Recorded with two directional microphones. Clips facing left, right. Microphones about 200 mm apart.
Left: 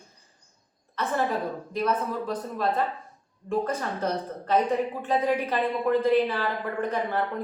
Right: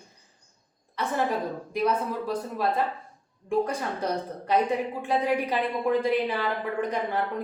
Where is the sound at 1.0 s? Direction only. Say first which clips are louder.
Even; 15° right (ahead or behind).